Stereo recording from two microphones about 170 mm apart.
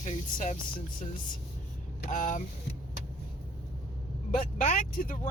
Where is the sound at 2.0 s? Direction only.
50° left (ahead or behind).